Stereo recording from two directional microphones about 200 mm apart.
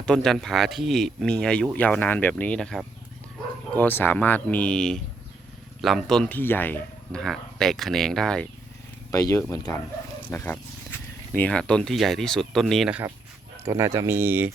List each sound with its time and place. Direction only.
0.0 s speech: 5° left (ahead or behind)
9.1 s speech: 15° left (ahead or behind); by 13.1 s 5° right (ahead or behind)
13.7 s speech: 15° right (ahead or behind)